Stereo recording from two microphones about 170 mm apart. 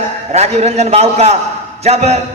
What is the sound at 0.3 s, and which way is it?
A man's voice, 40° right (ahead or behind).